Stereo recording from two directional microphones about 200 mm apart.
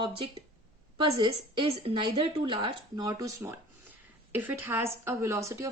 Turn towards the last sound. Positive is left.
turn(degrees=-15)  # may be behind; listen again after turning